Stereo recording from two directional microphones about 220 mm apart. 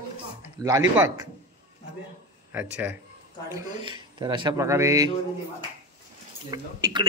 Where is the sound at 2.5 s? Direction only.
10° right (ahead or behind).